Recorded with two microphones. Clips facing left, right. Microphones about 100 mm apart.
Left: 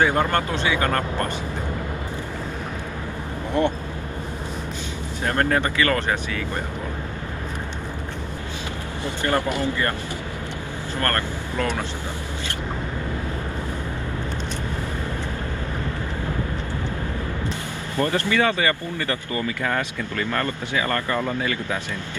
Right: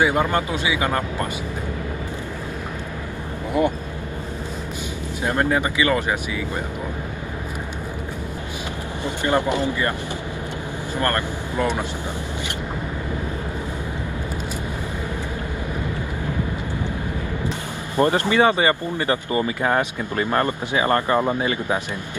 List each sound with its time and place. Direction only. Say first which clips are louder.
0.0 s speech: right 1 dB; 10° right (ahead or behind)
3.6 s speech: right 1 dB; 10° right (ahead or behind)
5.2 s speech: right 1 dB; 15° right (ahead or behind)
9.0 s speech: right 2 dB; 20° right (ahead or behind)
11.0 s speech: right 2 dB; 15° right (ahead or behind)
17.9 s speech: right 4 dB; 20° right (ahead or behind)